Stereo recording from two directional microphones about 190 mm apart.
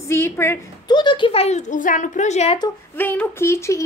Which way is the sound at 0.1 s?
15° left (ahead or behind).